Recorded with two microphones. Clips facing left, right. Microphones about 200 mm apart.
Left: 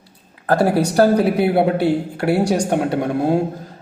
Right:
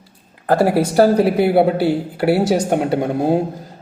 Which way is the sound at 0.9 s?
5° right (ahead or behind).